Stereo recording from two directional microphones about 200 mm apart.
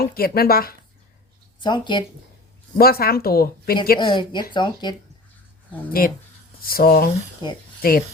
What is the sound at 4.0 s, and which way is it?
Speech, 25° left (ahead or behind).